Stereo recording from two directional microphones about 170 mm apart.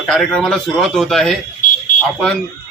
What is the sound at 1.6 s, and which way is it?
Fire alarm, 50° left (ahead or behind).